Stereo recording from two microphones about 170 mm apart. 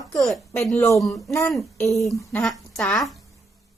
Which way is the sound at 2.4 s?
Centre (ahead or behind).